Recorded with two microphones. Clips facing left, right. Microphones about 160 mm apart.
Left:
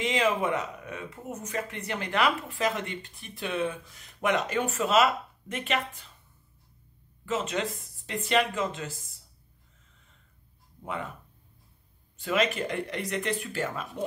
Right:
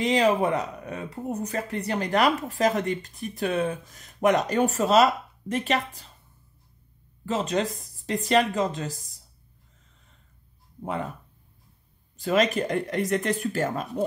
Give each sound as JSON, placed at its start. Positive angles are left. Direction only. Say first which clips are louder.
{"t": 0.0, "sound": "speech", "louder": "right 5 dB", "side_deg": -35}
{"t": 7.2, "sound": "speech", "louder": "right 4 dB", "side_deg": -35}
{"t": 10.8, "sound": "speech", "louder": "right 5 dB", "side_deg": -35}
{"t": 12.2, "sound": "speech", "louder": "right 4 dB", "side_deg": -40}